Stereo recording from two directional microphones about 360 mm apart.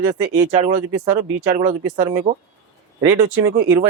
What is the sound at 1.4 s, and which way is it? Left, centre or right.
Speech, right.